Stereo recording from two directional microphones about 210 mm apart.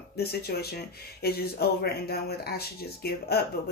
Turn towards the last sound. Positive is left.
turn(degrees=50)  # may be behind; listen again after turning